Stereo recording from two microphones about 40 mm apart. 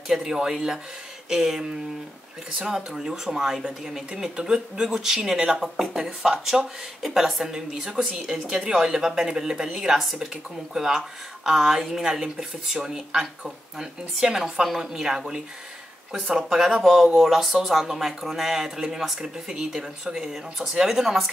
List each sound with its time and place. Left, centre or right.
0.1 s speech: centre
7.0 s a woman's voice: centre
7.4 s speech: centre
9.8 s a woman's voice: centre